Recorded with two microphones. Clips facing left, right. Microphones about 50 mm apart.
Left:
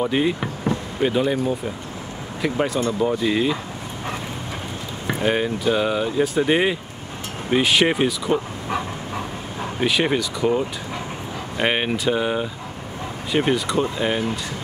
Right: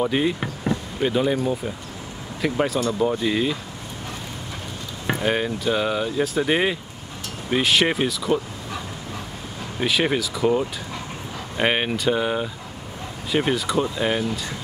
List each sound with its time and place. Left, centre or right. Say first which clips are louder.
0.0 s speech: left 1 dB; centre
2.4 s speech: even; centre
5.2 s speech: left 3 dB; centre
8.6 s dog: left 6 dB; left
9.8 s speech: left 1 dB; centre